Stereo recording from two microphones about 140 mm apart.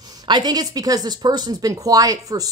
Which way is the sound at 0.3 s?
30° right (ahead or behind).